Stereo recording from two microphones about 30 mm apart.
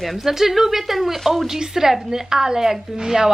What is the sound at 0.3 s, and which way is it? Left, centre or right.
A woman's voice, centre.